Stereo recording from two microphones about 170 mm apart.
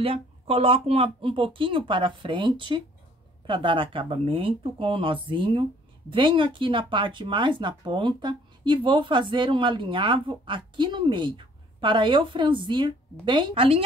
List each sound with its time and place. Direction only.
0.0 s speech: 35° right (ahead or behind)